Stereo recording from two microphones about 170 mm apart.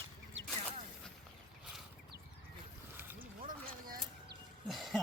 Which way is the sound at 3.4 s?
55° right (ahead or behind).